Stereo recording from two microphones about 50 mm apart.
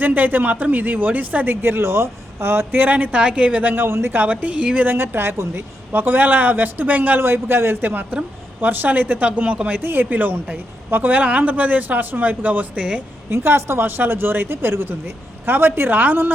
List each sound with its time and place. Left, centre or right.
0.0 s speech: right
1.6 s speech: right
3.2 s a woman's voice: right
3.8 s speech: right
4.2 s a woman's voice: right
4.9 s speech: right
7.4 s speech: right
9.8 s speech: right
13.3 s speech: right